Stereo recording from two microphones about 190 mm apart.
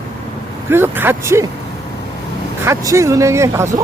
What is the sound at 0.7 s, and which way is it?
Speech, 10° right (ahead or behind).